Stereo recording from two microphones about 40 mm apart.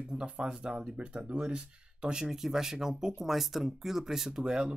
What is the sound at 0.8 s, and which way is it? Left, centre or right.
Speech, right.